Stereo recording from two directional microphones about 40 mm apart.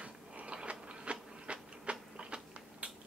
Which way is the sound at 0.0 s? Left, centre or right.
Right.